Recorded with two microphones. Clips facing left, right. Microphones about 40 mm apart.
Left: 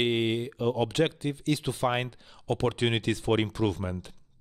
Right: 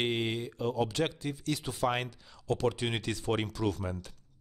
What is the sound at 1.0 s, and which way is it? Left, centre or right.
Speech, left.